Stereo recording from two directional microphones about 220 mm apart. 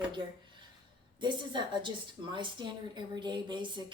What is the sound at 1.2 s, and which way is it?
Speech, 20° right (ahead or behind).